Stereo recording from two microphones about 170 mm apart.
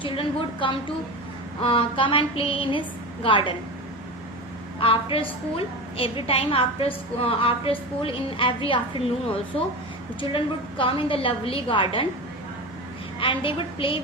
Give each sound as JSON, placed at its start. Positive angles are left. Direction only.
{"t": 0.0, "sound": "a woman's voice", "side_deg": 30}
{"t": 4.8, "sound": "a woman's voice", "side_deg": 30}
{"t": 10.2, "sound": "a woman's voice", "side_deg": 30}
{"t": 13.1, "sound": "a woman's voice", "side_deg": 30}